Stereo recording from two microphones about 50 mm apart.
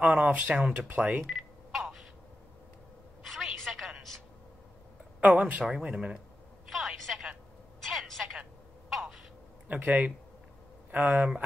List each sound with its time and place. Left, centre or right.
0.0 s speech: right
1.2 s telephone dialing: centre
3.3 s a sound: centre
5.2 s speech: right
5.7 s speech: centre
6.7 s telephone: centre
7.8 s a sound: centre
9.8 s speech: right
11.1 s speech: right